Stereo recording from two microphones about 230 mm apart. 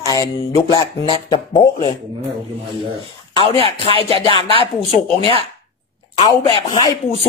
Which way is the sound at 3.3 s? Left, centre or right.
Left.